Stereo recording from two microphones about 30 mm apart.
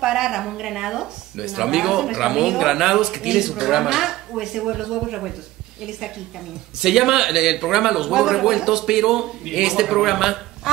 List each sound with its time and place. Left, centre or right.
0.0 s a woman's voice: centre
6.8 s a woman's voice: centre